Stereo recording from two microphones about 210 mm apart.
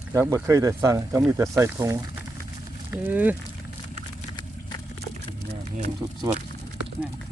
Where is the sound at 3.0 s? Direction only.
10° right (ahead or behind).